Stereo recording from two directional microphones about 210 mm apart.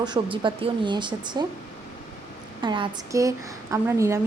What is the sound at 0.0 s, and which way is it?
Speech, 20° right (ahead or behind).